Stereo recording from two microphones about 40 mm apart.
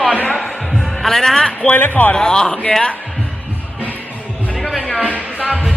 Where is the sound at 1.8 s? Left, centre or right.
Left.